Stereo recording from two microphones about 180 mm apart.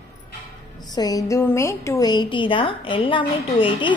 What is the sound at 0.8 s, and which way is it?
A woman's voice, 20° left (ahead or behind).